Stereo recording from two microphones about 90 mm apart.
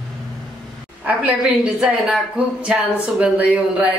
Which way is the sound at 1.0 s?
15° right (ahead or behind).